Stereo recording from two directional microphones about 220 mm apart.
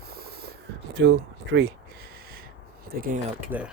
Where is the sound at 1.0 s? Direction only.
55° right (ahead or behind).